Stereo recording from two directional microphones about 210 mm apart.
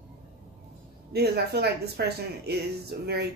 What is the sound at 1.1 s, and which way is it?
Speech, 50° right (ahead or behind).